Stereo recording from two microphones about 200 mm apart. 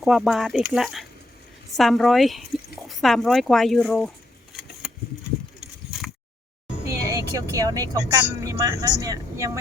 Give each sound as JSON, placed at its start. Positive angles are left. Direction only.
{"t": 0.0, "sound": "speech", "side_deg": 0}
{"t": 7.1, "sound": "speech", "side_deg": -15}